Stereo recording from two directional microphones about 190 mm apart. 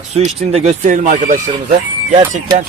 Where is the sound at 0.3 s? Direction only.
35° right (ahead or behind).